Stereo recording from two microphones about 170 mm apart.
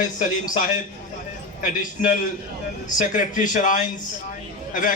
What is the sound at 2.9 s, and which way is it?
Speech, 50° left (ahead or behind).